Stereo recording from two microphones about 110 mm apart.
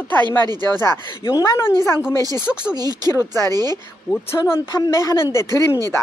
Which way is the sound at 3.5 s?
35° right (ahead or behind).